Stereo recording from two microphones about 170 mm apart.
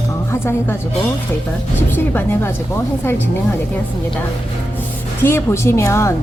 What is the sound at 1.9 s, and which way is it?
Speech, 10° left (ahead or behind).